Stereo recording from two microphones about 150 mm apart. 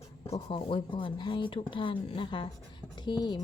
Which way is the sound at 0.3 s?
40° left (ahead or behind).